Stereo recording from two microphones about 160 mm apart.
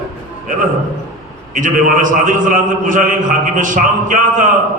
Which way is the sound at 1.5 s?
55° right (ahead or behind).